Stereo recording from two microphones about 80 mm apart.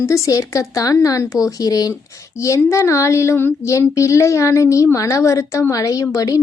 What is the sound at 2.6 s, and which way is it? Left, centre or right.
A woman's voice, left.